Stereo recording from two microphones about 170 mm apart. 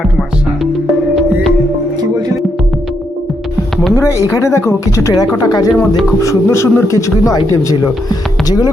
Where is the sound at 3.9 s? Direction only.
15° left (ahead or behind).